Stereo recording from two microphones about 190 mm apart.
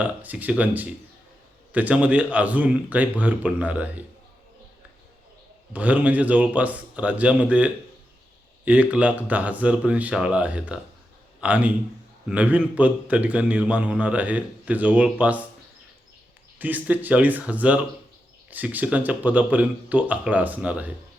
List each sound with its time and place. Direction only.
0.0 s a man's voice: 10° right (ahead or behind)
5.7 s a man's voice: 5° right (ahead or behind)
16.6 s a man's voice: 10° right (ahead or behind)